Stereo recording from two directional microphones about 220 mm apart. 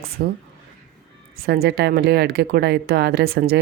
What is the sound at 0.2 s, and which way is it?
Speech, 45° right (ahead or behind).